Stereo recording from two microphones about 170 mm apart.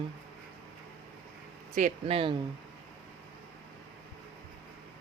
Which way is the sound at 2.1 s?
30° right (ahead or behind).